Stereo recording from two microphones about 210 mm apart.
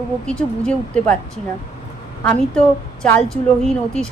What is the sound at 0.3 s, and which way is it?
Speech, 5° left (ahead or behind).